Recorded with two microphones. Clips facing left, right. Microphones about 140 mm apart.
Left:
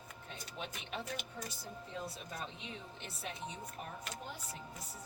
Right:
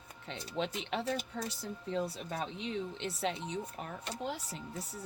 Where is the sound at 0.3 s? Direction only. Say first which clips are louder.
Right 10 dB; 80° right.